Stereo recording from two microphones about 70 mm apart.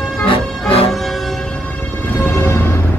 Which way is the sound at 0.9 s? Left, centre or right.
Centre.